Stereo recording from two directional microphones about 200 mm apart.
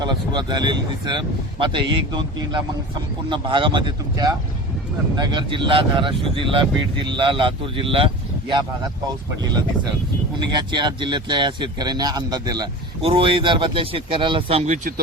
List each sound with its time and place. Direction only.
0.0 s speech: 20° right (ahead or behind)